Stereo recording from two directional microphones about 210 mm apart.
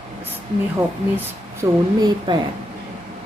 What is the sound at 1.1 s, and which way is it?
Speech, 15° right (ahead or behind).